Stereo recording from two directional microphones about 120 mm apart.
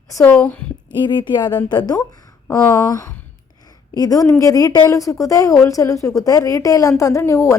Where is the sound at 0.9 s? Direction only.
40° left (ahead or behind).